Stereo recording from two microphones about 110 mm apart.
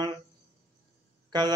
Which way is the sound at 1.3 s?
40° right (ahead or behind).